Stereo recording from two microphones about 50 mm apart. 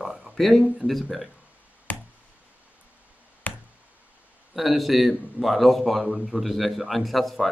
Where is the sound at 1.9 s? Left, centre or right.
Left.